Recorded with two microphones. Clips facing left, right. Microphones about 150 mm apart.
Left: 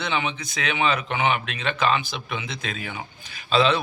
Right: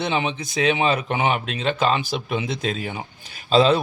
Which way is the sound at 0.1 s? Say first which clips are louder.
Right 3 dB; 35° right (ahead or behind).